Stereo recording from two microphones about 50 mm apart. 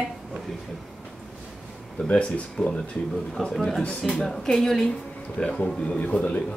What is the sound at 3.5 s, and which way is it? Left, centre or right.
Speech, centre.